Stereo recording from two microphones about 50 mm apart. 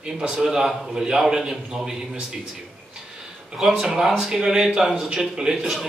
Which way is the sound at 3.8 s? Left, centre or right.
Centre.